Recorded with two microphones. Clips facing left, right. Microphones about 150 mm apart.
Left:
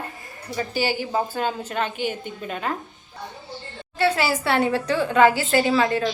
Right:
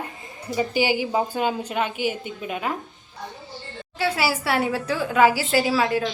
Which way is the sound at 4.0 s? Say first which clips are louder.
Left 2 dB; 5° right (ahead or behind).